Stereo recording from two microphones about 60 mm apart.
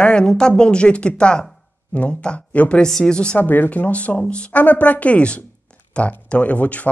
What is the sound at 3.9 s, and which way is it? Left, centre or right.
Speech, left.